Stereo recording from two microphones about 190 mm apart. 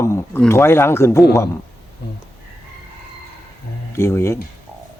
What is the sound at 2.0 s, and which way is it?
Speech, 60° left (ahead or behind).